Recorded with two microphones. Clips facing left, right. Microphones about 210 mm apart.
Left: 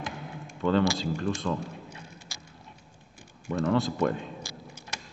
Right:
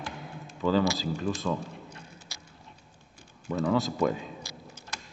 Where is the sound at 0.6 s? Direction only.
5° right (ahead or behind).